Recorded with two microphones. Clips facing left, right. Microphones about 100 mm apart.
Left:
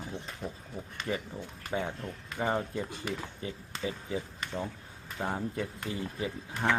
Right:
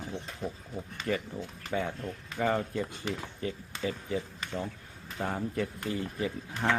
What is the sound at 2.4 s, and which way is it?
Speech, 20° left (ahead or behind).